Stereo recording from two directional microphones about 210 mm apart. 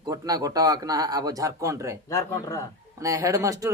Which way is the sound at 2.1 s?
15° left (ahead or behind).